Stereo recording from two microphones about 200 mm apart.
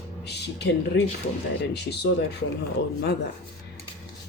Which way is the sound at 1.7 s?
55° left (ahead or behind).